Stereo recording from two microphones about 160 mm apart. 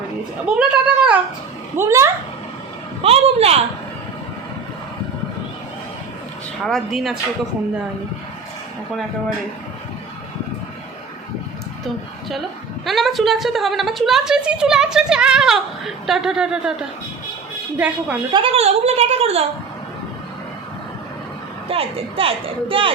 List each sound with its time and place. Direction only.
0.4 s speech: 5° right (ahead or behind)
1.7 s a woman's voice: 15° right (ahead or behind)
3.0 s a woman's voice: 40° right (ahead or behind)
6.7 s a woman's voice: centre (ahead or behind)
12.8 s a woman's voice: centre (ahead or behind)
17.7 s a woman's voice: 10° right (ahead or behind)
18.3 s a woman's voice: 35° right (ahead or behind)
21.7 s a woman's voice: 35° right (ahead or behind)